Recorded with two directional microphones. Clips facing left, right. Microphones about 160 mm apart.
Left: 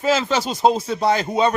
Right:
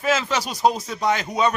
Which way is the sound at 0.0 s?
30° left (ahead or behind).